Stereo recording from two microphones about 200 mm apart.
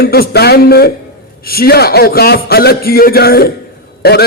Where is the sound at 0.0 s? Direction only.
50° left (ahead or behind).